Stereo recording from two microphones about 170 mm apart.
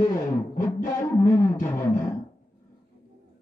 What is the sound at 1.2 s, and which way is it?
Music, 15° left (ahead or behind).